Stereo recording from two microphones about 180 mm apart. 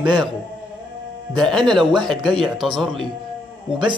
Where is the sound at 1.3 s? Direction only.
Centre (ahead or behind).